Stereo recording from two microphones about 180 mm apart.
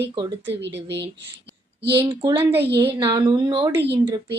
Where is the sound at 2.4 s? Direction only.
10° right (ahead or behind).